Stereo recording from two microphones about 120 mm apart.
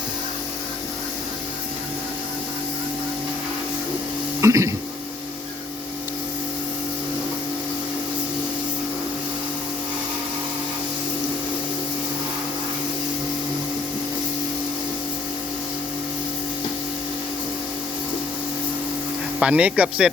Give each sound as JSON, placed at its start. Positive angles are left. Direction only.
{"t": 4.4, "sound": "speech", "side_deg": -25}
{"t": 19.4, "sound": "speech", "side_deg": -10}